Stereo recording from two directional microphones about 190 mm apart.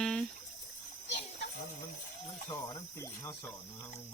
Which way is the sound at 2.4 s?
20° left (ahead or behind).